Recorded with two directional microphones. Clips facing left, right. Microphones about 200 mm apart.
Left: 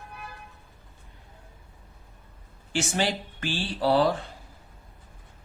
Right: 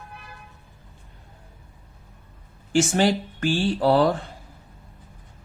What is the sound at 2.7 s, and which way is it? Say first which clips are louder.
Speech: right 7 dB; 45° right (ahead or behind).